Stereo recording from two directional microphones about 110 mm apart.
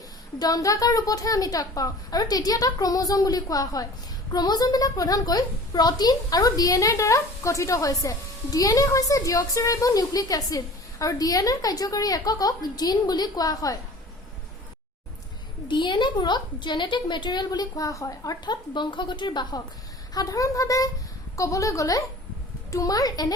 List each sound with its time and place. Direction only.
0.3 s a woman's voice: 35° left (ahead or behind)
15.7 s a woman's voice: 45° left (ahead or behind)